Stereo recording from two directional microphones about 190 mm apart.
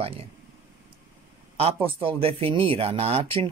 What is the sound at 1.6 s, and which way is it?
Speech, 30° right (ahead or behind).